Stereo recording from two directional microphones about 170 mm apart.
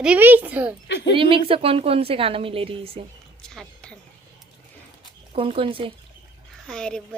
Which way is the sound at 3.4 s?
5° left (ahead or behind).